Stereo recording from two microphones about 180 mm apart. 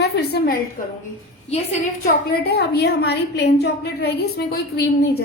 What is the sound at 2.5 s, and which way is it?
A woman's voice, 65° left (ahead or behind).